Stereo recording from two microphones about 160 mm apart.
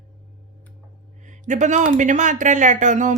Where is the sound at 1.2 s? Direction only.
50° right (ahead or behind).